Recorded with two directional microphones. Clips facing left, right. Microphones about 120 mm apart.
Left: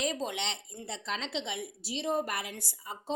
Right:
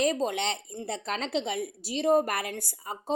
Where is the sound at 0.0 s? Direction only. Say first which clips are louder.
Right 7 dB; 45° right (ahead or behind).